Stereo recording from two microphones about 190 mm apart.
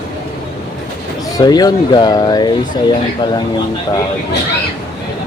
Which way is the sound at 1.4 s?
20° left (ahead or behind).